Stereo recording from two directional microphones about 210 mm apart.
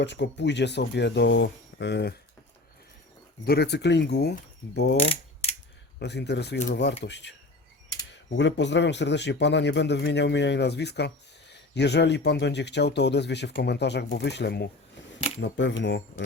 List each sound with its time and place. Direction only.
0.0 s a man's voice: 55° left (ahead or behind)
3.4 s speech: 50° left (ahead or behind)
4.9 s mechanisms: 30° left (ahead or behind)
6.0 s a man's voice: 55° left (ahead or behind)
8.4 s a man's voice: 55° left (ahead or behind)